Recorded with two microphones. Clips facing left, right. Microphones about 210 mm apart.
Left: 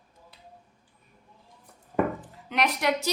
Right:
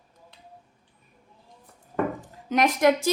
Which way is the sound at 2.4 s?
45° right (ahead or behind).